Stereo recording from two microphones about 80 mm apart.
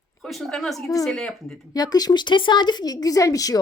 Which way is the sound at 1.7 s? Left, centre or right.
Left.